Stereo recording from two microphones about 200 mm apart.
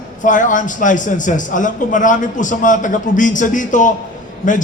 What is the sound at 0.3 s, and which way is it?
A man's voice, 40° left (ahead or behind).